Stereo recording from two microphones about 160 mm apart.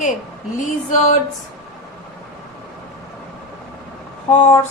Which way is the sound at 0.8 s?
50° left (ahead or behind).